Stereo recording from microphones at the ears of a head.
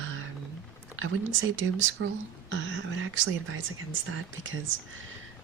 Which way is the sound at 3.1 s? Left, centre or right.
Right.